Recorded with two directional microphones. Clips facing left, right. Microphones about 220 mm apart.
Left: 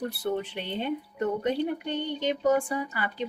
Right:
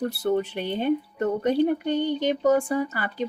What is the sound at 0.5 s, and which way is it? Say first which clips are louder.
A woman's voice: right 6 dB; 45° right (ahead or behind).